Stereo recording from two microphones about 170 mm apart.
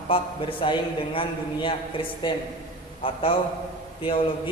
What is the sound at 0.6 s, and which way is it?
A woman's voice, 30° left (ahead or behind).